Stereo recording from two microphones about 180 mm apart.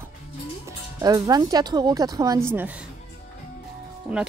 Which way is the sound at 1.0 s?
20° right (ahead or behind).